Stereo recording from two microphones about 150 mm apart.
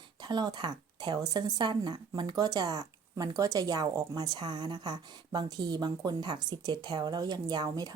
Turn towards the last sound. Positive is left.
turn(degrees=-25)  # may be behind; listen again after turning